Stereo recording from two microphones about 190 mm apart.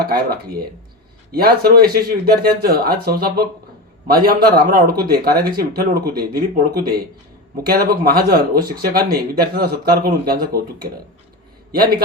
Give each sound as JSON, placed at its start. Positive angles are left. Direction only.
{"t": 0.0, "sound": "speech", "side_deg": -55}